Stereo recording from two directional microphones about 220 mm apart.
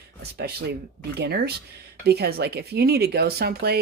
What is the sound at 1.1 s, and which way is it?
Speech, 45° right (ahead or behind).